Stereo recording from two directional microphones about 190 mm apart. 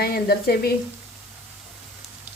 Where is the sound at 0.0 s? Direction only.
55° left (ahead or behind).